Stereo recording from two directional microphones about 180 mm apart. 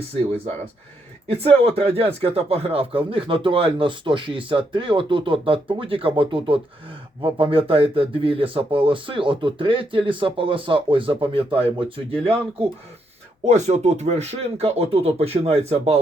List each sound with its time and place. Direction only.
1.3 s speech: 35° right (ahead or behind)
13.4 s speech: 40° right (ahead or behind)